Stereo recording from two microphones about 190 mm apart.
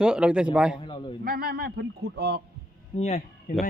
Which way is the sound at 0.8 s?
25° left (ahead or behind).